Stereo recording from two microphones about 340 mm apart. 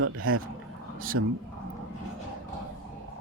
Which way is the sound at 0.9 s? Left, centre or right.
Right.